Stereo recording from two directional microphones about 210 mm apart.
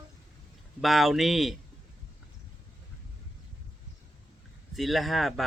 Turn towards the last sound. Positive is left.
turn(degrees=0)  # may be behind; listen again after turning